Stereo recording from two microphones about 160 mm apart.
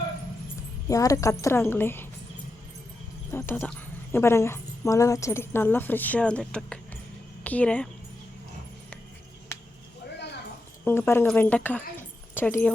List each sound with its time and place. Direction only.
0.9 s speech: 20° left (ahead or behind)
3.3 s speech: 15° left (ahead or behind)
9.5 s a sound: 15° left (ahead or behind)
10.8 s speech: 15° left (ahead or behind)